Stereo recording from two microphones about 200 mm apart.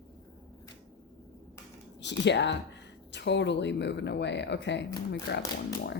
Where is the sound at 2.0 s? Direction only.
60° left (ahead or behind).